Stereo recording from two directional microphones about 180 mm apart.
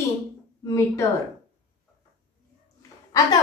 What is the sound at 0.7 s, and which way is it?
Speech, 15° left (ahead or behind).